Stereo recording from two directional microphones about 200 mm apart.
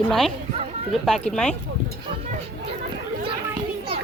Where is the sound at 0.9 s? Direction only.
Centre (ahead or behind).